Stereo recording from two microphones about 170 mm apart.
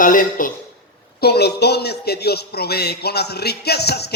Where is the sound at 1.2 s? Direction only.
70° left (ahead or behind).